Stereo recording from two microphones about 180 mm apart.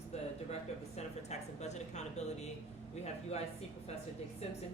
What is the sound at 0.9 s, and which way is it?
A woman's voice, 40° left (ahead or behind).